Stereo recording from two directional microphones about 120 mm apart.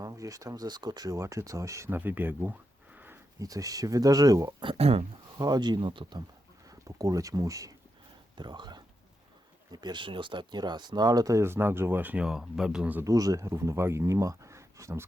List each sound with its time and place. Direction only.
0.0 s speech: 30° right (ahead or behind)
2.0 s a sound: 15° right (ahead or behind)
3.4 s speech: 30° right (ahead or behind)
4.6 s speech: 50° right (ahead or behind)
5.4 s speech: 35° right (ahead or behind)
6.7 s speech: 30° right (ahead or behind)
8.4 s speech: 40° right (ahead or behind); by 13.1 s 10° right (ahead or behind)
13.1 s speech: 30° right (ahead or behind)